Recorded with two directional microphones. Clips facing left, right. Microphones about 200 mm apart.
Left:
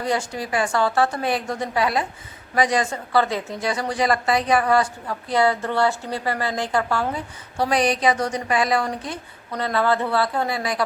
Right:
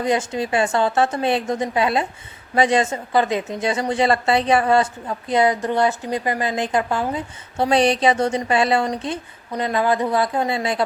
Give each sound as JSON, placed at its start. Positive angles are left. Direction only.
{"t": 0.0, "sound": "a woman's voice", "side_deg": -20}